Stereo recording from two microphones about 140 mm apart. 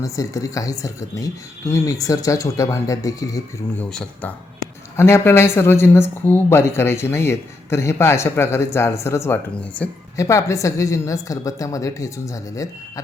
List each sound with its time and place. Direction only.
0.0 s a woman's voice: 25° left (ahead or behind)
3.8 s a woman's voice: 10° left (ahead or behind)